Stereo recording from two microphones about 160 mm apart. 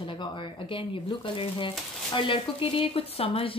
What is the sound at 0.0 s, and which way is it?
Speech, 30° left (ahead or behind).